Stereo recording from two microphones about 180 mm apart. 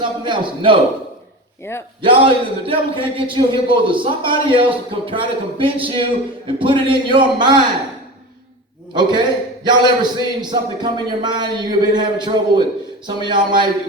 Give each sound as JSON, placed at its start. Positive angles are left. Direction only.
{"t": 0.0, "sound": "a man's voice", "side_deg": -25}
{"t": 2.0, "sound": "a man's voice", "side_deg": -30}
{"t": 8.9, "sound": "a man's voice", "side_deg": -25}